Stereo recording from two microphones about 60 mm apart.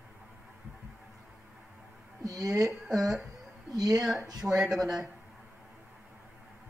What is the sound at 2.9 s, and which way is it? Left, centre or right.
Speech, centre.